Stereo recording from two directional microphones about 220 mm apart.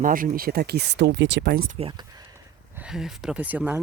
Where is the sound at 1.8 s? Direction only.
20° right (ahead or behind).